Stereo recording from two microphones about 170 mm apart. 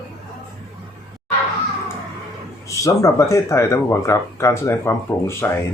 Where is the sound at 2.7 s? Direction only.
20° left (ahead or behind).